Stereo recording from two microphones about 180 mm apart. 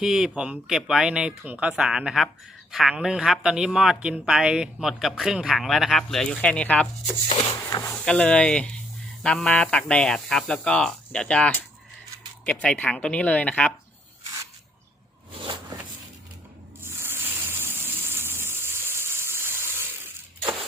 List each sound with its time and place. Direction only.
0.0 s speech: 5° right (ahead or behind); by 7.9 s 15° left (ahead or behind)
7.9 s speech: 5° left (ahead or behind)
16.8 s a sound: 15° right (ahead or behind)